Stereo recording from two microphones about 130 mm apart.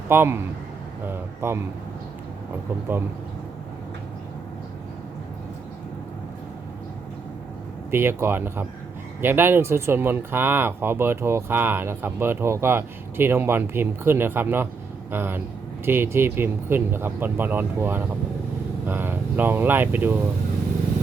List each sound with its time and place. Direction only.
0.1 s speech: 15° right (ahead or behind)
7.9 s speech: 20° right (ahead or behind)